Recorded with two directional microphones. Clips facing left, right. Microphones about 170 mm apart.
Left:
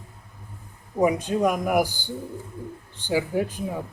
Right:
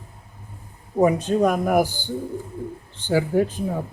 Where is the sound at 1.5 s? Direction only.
30° right (ahead or behind).